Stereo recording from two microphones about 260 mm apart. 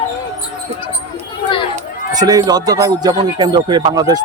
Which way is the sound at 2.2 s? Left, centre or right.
Centre.